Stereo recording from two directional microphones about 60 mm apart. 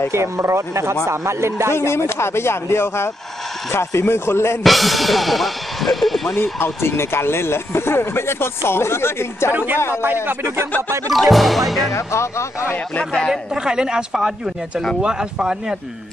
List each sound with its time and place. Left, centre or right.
0.1 s speech: right
1.7 s speech: left
4.6 s speech: centre
6.3 s speech: left
10.4 s speech: right
11.1 s speech: centre
11.9 s speech: left
12.7 s speech: left
13.3 s speech: centre